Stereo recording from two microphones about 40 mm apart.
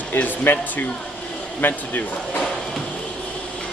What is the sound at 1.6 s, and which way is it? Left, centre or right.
Speech, left.